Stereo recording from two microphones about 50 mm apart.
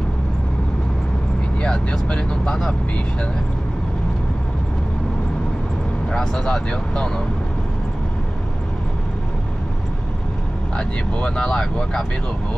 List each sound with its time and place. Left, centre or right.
1.6 s speech: left
6.1 s speech: centre
10.8 s speech: centre